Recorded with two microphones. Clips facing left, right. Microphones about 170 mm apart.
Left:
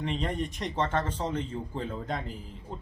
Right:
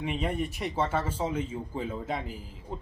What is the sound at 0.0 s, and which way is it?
Speech, 10° right (ahead or behind).